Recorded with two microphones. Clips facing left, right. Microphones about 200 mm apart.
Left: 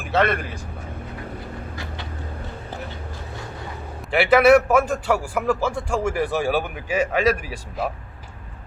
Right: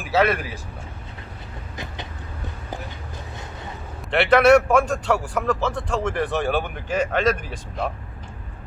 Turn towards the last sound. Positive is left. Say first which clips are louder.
# left 1 dB
turn(degrees=5)  # may be behind; listen again after turning